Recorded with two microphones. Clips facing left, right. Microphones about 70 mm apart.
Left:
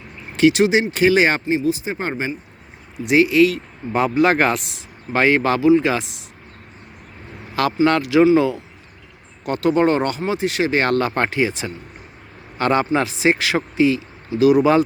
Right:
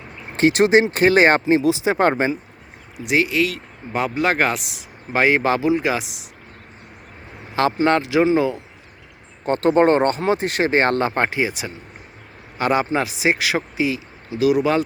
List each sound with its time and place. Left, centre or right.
0.3 s speech: right
1.6 s speech: right
3.0 s speech: centre
7.9 s speech: right
9.4 s speech: right; by 14.8 s centre